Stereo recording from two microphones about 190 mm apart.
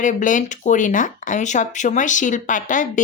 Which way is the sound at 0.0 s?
40° left (ahead or behind).